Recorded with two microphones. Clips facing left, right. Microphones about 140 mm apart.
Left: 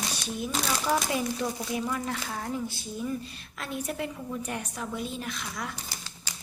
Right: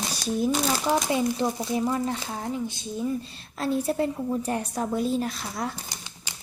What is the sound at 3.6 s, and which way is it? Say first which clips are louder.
A woman's voice: right 8 dB; 30° right (ahead or behind).